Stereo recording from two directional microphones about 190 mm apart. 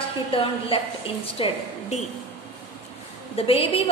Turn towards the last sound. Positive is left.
turn(degrees=30)  # may be behind; listen again after turning